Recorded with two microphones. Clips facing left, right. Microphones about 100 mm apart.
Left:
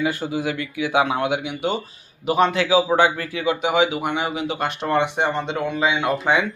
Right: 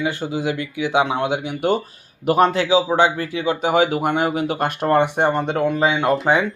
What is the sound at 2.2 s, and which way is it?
Speech, 50° right (ahead or behind).